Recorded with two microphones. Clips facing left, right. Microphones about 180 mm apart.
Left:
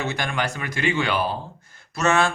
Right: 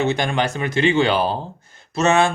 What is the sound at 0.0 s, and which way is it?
Speech, 25° right (ahead or behind).